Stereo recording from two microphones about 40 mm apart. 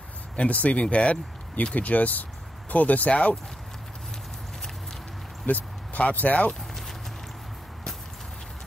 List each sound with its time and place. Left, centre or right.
0.4 s speech: left
5.5 s speech: left